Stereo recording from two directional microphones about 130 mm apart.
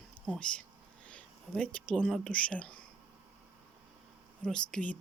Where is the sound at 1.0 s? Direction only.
10° left (ahead or behind).